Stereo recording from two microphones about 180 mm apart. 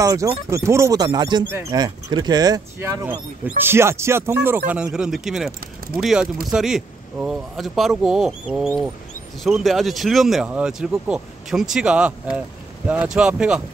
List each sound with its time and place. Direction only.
0.0 s speech: 15° right (ahead or behind)